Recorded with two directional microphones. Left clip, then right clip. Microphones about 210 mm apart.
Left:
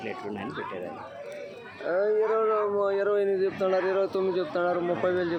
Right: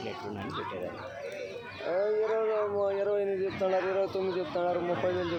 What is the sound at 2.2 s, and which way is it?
Speech, 50° left (ahead or behind).